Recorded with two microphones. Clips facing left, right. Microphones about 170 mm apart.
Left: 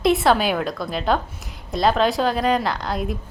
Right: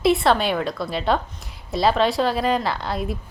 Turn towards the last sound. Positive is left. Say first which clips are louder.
# left 1 dB
turn(degrees=0)  # may be behind; listen again after turning